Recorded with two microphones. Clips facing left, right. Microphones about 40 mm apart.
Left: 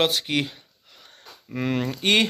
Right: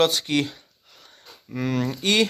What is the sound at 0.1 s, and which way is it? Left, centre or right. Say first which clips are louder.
Speech: right 1 dB; centre.